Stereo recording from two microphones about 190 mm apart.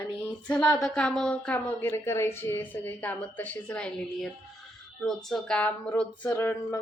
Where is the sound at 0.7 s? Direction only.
5° left (ahead or behind).